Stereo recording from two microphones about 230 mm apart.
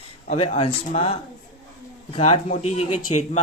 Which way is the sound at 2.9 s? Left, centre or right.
Left.